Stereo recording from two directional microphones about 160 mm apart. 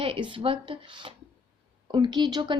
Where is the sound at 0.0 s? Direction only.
30° right (ahead or behind).